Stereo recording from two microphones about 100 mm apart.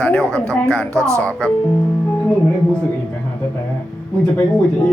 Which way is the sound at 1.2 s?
10° left (ahead or behind).